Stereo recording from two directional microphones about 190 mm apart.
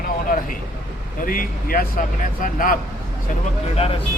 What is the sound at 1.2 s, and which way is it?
Speech, 50° left (ahead or behind).